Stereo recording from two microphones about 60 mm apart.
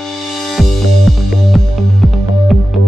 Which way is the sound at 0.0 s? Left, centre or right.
Centre.